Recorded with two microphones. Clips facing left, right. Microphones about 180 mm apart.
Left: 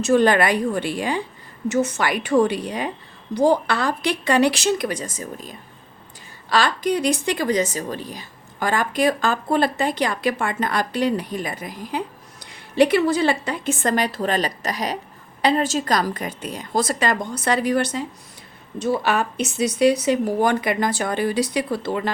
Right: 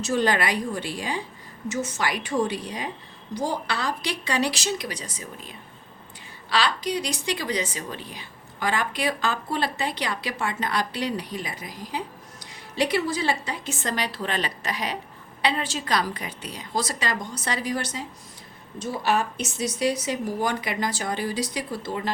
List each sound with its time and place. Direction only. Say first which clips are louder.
0.0 s speech: left 7 dB; 55° left (ahead or behind)